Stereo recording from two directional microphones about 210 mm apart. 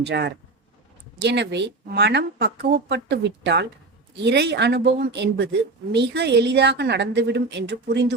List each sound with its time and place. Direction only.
0.0 s a woman's voice: 55° right (ahead or behind)